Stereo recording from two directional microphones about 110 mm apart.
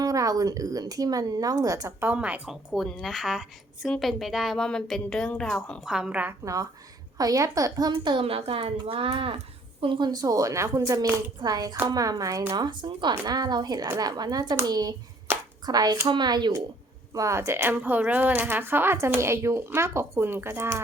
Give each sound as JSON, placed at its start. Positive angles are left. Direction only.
{"t": 0.0, "sound": "speech", "side_deg": -30}
{"t": 2.0, "sound": "a woman's voice", "side_deg": -15}
{"t": 5.8, "sound": "speech", "side_deg": -5}
{"t": 6.4, "sound": "speech", "side_deg": -30}
{"t": 8.0, "sound": "speech", "side_deg": -55}
{"t": 12.5, "sound": "speech", "side_deg": -45}
{"t": 13.8, "sound": "speech", "side_deg": -25}
{"t": 14.1, "sound": "speech", "side_deg": -35}
{"t": 15.3, "sound": "a sound", "side_deg": -20}
{"t": 15.6, "sound": "speech", "side_deg": -35}